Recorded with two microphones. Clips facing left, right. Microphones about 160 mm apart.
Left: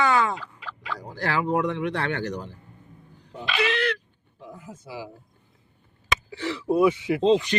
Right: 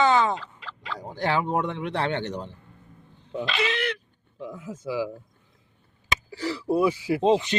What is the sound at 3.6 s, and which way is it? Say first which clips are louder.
Speech: left 4 dB; 20° right (ahead or behind).